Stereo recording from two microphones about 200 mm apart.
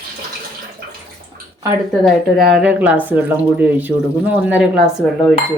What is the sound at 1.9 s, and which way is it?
Speech, centre (ahead or behind).